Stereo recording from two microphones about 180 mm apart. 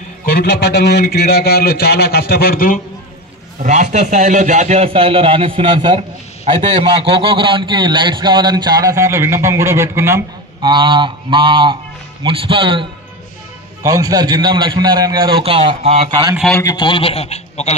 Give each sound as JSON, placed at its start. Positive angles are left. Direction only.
{"t": 0.3, "sound": "a man's voice", "side_deg": 60}
{"t": 3.6, "sound": "a man's voice", "side_deg": -40}
{"t": 10.7, "sound": "a man's voice", "side_deg": -25}
{"t": 13.8, "sound": "a man's voice", "side_deg": -20}
{"t": 16.1, "sound": "a man's voice", "side_deg": -20}
{"t": 16.5, "sound": "a man's voice", "side_deg": 20}